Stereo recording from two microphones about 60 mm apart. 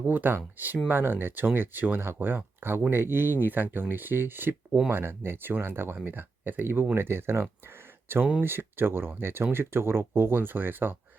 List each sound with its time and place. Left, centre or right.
0.0 s speech: right